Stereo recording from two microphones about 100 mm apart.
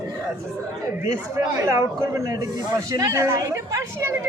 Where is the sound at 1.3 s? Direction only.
30° right (ahead or behind).